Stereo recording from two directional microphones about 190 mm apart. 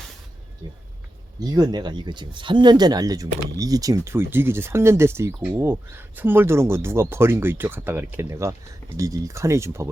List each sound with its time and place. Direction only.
1.4 s speech: 20° right (ahead or behind)